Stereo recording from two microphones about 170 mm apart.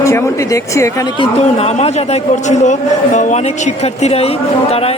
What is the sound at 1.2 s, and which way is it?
A woman's voice, 35° left (ahead or behind).